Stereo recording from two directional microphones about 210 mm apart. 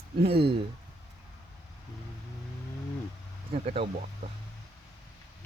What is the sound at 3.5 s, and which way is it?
Speech, 25° right (ahead or behind).